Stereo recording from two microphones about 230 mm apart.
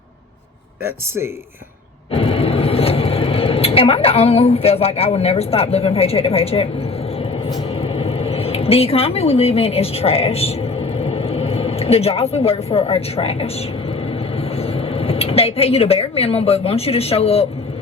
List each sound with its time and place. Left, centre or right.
0.9 s speech: centre
2.1 s speech: left
7.8 s speech: left